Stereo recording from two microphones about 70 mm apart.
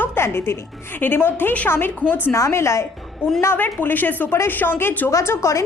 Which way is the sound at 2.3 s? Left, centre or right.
Left.